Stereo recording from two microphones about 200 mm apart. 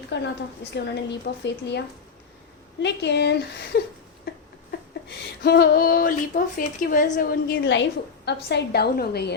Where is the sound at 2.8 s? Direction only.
60° left (ahead or behind).